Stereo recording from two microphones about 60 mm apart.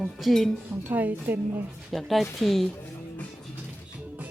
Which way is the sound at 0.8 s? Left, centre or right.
Right.